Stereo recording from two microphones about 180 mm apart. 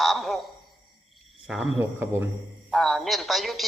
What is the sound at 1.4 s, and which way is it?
A man's voice, centre (ahead or behind).